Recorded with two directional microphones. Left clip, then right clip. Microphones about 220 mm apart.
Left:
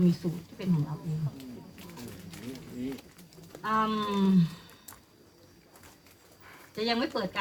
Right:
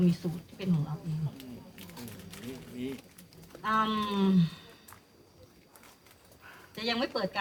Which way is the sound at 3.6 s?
30° right (ahead or behind).